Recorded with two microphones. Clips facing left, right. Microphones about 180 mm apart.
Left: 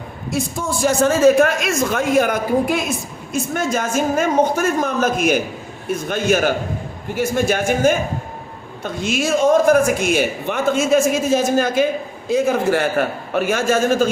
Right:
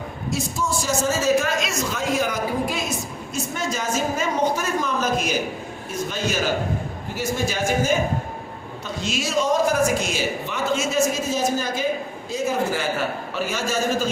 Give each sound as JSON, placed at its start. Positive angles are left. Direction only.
{"t": 0.3, "sound": "a man's voice", "side_deg": 55}